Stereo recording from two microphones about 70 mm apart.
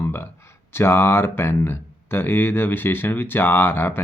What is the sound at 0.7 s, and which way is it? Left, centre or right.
Speech, left.